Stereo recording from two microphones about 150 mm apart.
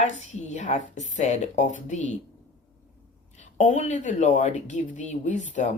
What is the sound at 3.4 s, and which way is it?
A woman's voice, 55° left (ahead or behind).